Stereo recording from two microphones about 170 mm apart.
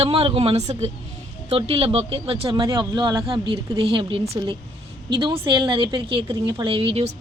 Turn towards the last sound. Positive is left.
turn(degrees=-35)  # may be behind; listen again after turning